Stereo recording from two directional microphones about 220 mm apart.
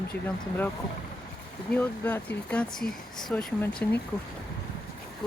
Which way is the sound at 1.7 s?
5° left (ahead or behind).